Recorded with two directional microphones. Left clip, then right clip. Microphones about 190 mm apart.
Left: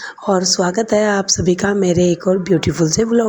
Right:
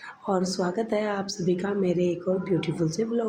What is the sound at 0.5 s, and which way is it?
Speech, 40° left (ahead or behind).